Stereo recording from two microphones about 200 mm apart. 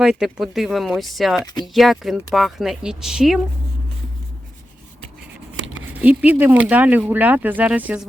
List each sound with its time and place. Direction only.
0.0 s speech: 5° right (ahead or behind)
5.6 s a sound: 75° right (ahead or behind)
5.9 s speech: 10° right (ahead or behind)